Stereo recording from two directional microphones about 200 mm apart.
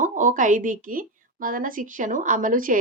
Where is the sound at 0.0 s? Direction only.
40° right (ahead or behind).